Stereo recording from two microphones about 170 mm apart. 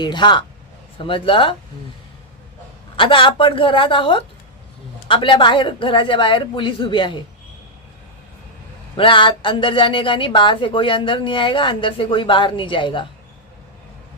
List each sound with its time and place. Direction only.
0.0 s speech: 25° left (ahead or behind)
2.9 s speech: 30° left (ahead or behind)
9.0 s speech: 30° left (ahead or behind)